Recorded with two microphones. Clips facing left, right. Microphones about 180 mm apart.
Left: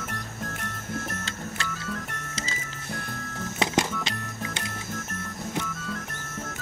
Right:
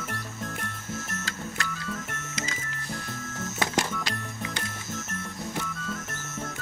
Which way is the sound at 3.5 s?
20° left (ahead or behind).